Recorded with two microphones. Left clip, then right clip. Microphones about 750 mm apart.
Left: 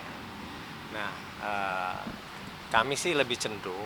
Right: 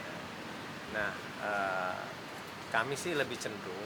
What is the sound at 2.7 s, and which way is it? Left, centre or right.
Speech, left.